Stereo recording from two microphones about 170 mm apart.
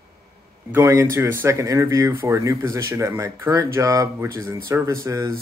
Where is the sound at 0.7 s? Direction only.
15° right (ahead or behind).